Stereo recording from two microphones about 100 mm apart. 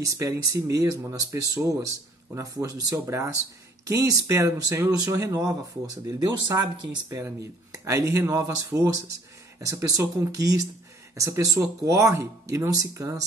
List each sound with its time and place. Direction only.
0.0 s speech: 35° right (ahead or behind)